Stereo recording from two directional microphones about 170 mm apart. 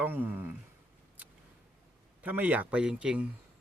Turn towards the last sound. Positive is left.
turn(degrees=-5)  # may be behind; listen again after turning